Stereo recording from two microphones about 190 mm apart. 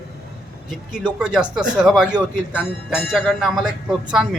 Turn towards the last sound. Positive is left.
turn(degrees=-5)  # may be behind; listen again after turning